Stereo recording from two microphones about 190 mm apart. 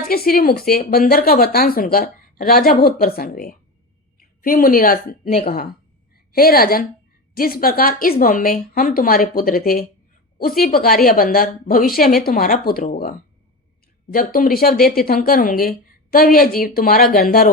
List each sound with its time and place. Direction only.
0.1 s a woman's voice: 50° left (ahead or behind)